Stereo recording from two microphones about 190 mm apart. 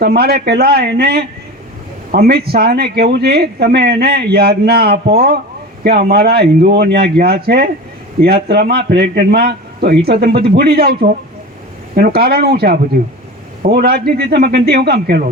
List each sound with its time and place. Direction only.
0.0 s a man's voice: 55° right (ahead or behind)
11.9 s a man's voice: 55° right (ahead or behind)